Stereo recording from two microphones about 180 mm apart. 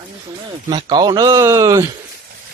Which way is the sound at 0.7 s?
25° right (ahead or behind).